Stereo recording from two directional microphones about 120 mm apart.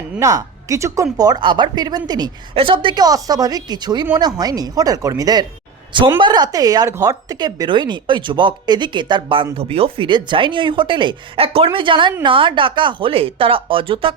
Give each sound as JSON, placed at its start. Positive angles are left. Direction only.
{"t": 0.2, "sound": "speech", "side_deg": -25}
{"t": 1.4, "sound": "speech", "side_deg": -40}
{"t": 2.6, "sound": "speech", "side_deg": -45}